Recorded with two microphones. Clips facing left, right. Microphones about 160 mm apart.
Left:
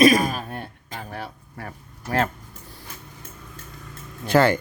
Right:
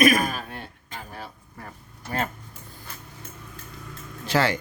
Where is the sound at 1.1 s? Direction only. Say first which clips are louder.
Left 5 dB; 70° left (ahead or behind).